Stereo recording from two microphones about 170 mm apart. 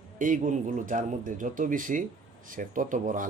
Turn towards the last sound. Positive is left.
turn(degrees=-50)  # may be behind; listen again after turning